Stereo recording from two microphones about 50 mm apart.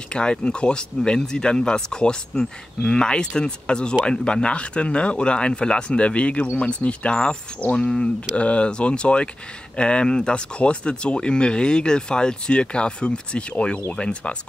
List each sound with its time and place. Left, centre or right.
0.1 s speech: centre